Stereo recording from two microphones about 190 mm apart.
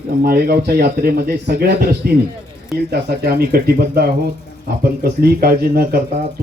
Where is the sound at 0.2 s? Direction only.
55° right (ahead or behind).